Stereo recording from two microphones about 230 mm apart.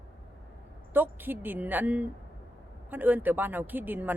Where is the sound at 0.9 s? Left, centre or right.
Centre.